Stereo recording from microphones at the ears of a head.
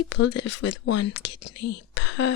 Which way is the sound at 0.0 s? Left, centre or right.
Left.